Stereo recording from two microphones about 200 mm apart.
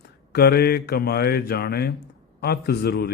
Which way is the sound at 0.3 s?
50° left (ahead or behind).